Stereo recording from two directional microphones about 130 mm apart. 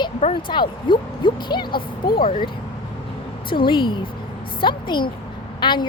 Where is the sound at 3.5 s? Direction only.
40° left (ahead or behind).